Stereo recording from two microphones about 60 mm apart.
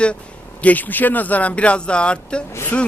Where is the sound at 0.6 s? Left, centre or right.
Left.